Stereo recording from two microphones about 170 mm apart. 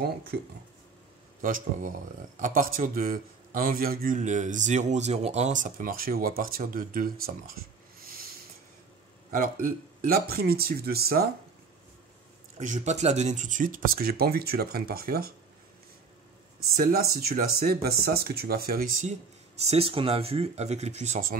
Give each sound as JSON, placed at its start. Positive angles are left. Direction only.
{"t": 0.0, "sound": "speech", "side_deg": -65}
{"t": 1.4, "sound": "speech", "side_deg": -50}
{"t": 9.3, "sound": "speech", "side_deg": -55}
{"t": 12.5, "sound": "speech", "side_deg": -50}
{"t": 16.7, "sound": "speech", "side_deg": -60}
{"t": 19.6, "sound": "speech", "side_deg": -35}